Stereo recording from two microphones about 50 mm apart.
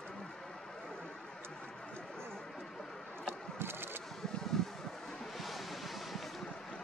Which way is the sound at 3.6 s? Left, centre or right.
Right.